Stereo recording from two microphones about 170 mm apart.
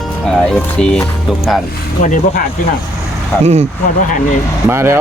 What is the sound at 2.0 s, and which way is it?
Speech, 50° left (ahead or behind).